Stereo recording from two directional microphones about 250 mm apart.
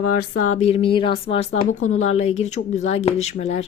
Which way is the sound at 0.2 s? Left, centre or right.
Left.